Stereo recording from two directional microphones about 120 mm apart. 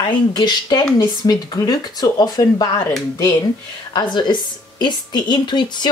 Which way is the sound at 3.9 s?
35° left (ahead or behind).